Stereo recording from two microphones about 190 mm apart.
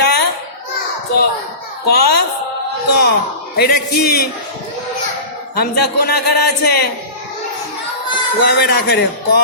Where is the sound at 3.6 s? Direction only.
55° left (ahead or behind).